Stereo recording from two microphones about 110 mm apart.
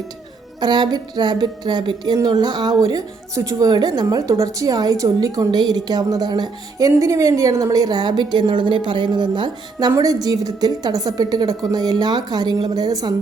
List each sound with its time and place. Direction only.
0.6 s a woman's voice: 40° right (ahead or behind)
9.9 s a woman's voice: 30° right (ahead or behind)